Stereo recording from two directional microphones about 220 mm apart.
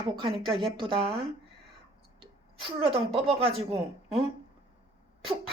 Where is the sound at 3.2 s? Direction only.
25° right (ahead or behind).